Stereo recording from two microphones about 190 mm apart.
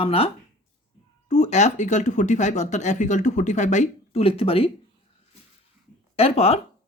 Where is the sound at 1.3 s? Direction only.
40° left (ahead or behind).